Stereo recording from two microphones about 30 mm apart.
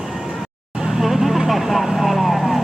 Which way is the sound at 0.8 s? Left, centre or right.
Centre.